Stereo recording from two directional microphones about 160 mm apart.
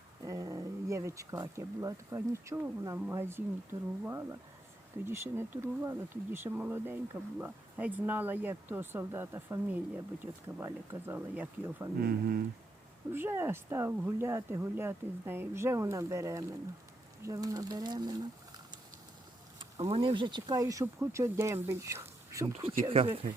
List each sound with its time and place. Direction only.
0.2 s speech: 20° right (ahead or behind)
12.0 s speech: 65° right (ahead or behind)
13.1 s speech: 15° right (ahead or behind)
19.9 s speech: 30° right (ahead or behind)
22.9 s speech: 35° right (ahead or behind)